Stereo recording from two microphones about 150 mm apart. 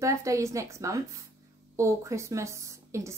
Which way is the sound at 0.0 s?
20° right (ahead or behind).